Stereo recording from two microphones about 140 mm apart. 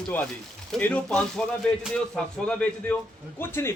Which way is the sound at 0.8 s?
5° left (ahead or behind).